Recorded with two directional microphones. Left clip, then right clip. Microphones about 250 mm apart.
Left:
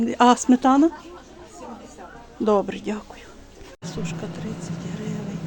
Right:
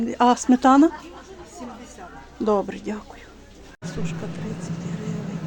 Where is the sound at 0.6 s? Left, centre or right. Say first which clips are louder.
Right 5 dB; centre.